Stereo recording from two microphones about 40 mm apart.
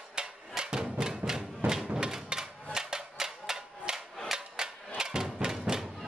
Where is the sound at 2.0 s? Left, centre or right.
Centre.